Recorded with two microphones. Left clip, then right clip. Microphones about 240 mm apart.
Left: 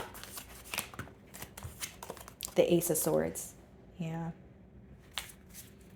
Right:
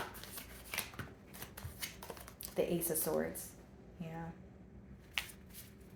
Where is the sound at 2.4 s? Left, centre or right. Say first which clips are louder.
Left 9 dB; left.